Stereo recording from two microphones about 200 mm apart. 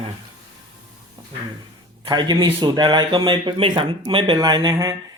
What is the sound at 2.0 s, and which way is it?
Speech, 20° right (ahead or behind).